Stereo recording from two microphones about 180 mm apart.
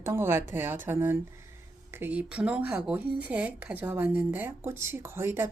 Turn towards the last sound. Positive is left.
turn(degrees=-15)  # may be behind; listen again after turning